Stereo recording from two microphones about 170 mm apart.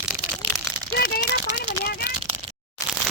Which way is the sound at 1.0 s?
70° left (ahead or behind).